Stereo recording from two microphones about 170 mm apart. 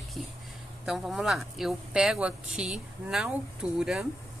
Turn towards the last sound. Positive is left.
turn(degrees=0)  # may be behind; listen again after turning